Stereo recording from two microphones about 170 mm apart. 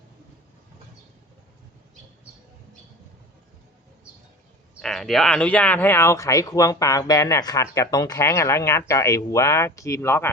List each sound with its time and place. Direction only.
4.7 s speech: 5° left (ahead or behind)